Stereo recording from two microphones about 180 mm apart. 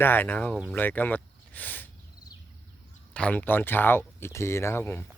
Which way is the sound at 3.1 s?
5° left (ahead or behind).